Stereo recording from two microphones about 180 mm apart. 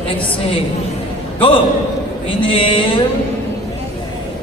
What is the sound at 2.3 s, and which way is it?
Speech, 30° left (ahead or behind).